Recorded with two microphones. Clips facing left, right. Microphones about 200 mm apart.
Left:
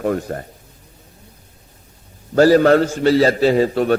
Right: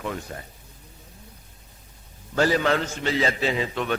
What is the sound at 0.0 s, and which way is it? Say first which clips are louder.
Speech: left 11 dB; 50° left (ahead or behind).